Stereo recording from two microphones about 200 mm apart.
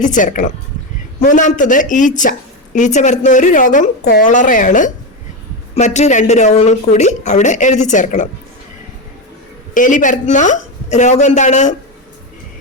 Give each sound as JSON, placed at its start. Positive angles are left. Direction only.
{"t": 0.0, "sound": "speech", "side_deg": 40}
{"t": 9.7, "sound": "speech", "side_deg": 40}